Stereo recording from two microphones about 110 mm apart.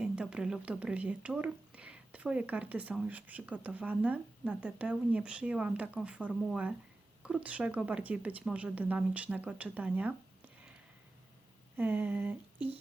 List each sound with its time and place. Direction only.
0.0 s speech: 5° right (ahead or behind)
11.8 s speech: 15° right (ahead or behind)